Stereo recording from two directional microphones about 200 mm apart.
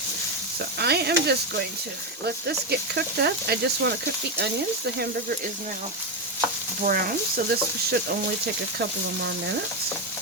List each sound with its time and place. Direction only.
0.8 s sizzle: 55° right (ahead or behind)
6.8 s speech: 45° right (ahead or behind)